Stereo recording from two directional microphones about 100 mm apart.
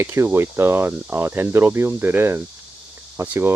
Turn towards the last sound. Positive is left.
turn(degrees=-25)  # may be behind; listen again after turning